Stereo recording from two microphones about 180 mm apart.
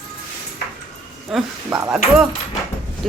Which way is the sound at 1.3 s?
Centre (ahead or behind).